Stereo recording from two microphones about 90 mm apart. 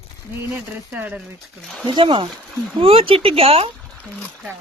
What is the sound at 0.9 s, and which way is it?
Speech, 20° right (ahead or behind).